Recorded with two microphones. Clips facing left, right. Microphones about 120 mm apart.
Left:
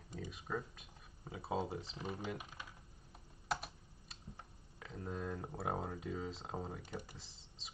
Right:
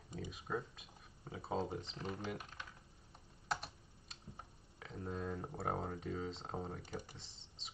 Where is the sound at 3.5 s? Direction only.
Centre (ahead or behind).